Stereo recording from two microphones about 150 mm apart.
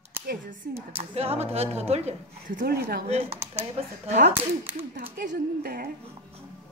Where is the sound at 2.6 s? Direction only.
90° right.